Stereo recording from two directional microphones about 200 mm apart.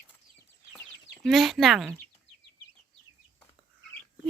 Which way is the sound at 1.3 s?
Centre (ahead or behind).